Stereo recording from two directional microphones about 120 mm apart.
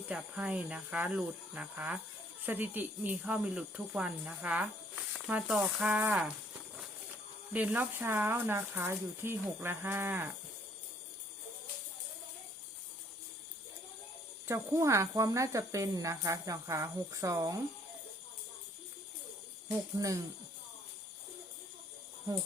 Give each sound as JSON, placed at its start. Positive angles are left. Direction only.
{"t": 0.1, "sound": "speech", "side_deg": -10}
{"t": 7.5, "sound": "speech", "side_deg": -15}
{"t": 14.4, "sound": "speech", "side_deg": -25}
{"t": 20.0, "sound": "speech", "side_deg": -30}
{"t": 22.3, "sound": "speech", "side_deg": -25}